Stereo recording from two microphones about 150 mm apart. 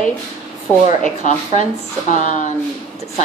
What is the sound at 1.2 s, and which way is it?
Speech, 55° left (ahead or behind).